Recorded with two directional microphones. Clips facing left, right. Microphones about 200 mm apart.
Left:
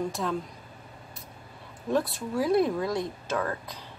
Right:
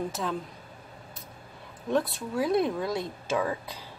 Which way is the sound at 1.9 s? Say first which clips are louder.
Even; centre (ahead or behind).